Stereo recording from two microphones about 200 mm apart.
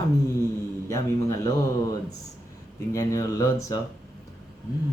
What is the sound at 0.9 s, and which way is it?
Speech, 15° left (ahead or behind).